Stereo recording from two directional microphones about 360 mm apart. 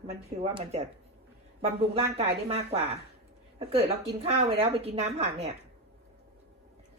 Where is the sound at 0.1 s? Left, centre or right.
Centre.